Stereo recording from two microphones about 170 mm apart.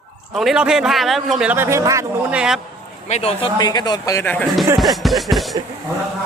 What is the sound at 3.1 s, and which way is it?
Speech, 35° left (ahead or behind).